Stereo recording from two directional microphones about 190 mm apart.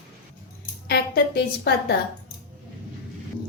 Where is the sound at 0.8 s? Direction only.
55° left (ahead or behind).